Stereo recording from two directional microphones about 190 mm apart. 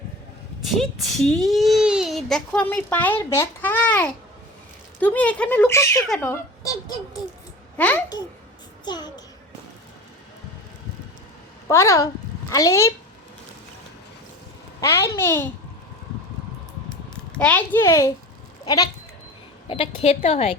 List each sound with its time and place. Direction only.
0.6 s a child's voice: centre (ahead or behind); by 7.2 s 20° left (ahead or behind)
7.8 s speech: 10° left (ahead or behind)
8.8 s a child's voice: 20° left (ahead or behind)
11.7 s a woman's voice: 15° left (ahead or behind)
14.8 s speech: 15° left (ahead or behind)
17.3 s a woman's voice: 5° left (ahead or behind); by 20.6 s 30° left (ahead or behind)